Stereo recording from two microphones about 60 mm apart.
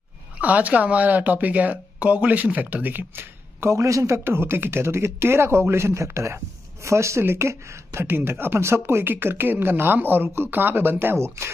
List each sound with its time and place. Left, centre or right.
0.4 s speech: right
3.6 s a man's voice: right
4.2 s speech: right